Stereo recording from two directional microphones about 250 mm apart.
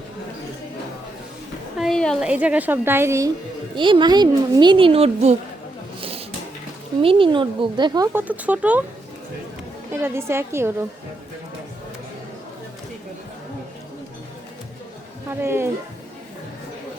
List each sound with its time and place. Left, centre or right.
1.8 s a woman's voice: centre; by 5.4 s right
6.0 s a sound: right
7.0 s speech: right
9.9 s speech: centre
15.3 s speech: centre